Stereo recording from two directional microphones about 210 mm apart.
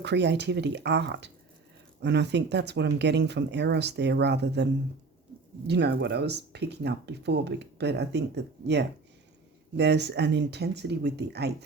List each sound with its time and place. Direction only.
0.0 s speech: 55° right (ahead or behind)